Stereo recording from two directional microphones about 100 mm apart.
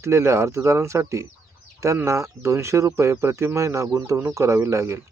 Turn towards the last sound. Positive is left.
turn(degrees=-30)  # may be behind; listen again after turning